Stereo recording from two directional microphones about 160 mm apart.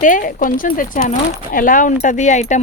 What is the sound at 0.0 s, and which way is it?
Speech, 55° left (ahead or behind).